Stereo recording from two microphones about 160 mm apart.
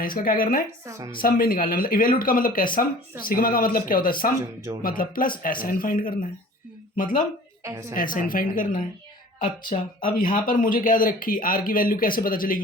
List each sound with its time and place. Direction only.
0.0 s speech: 60° left (ahead or behind)
0.9 s a woman's voice: 20° right (ahead or behind)
1.2 s speech: 65° left (ahead or behind)
4.4 s speech: 20° right (ahead or behind)
4.8 s speech: 60° left (ahead or behind)
7.6 s a woman's voice: 20° right (ahead or behind)
7.9 s speech: 60° left (ahead or behind)